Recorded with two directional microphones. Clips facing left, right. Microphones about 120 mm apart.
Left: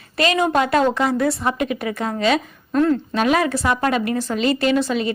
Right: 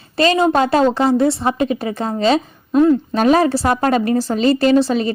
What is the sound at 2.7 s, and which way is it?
Speech, 15° right (ahead or behind).